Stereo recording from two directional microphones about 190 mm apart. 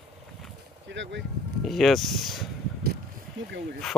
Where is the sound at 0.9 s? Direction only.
70° right (ahead or behind).